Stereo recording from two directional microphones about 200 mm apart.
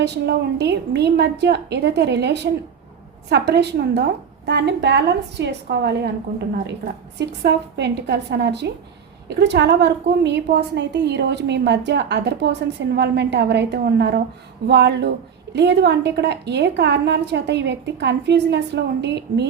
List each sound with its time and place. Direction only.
0.0 s a woman's voice: 60° right (ahead or behind)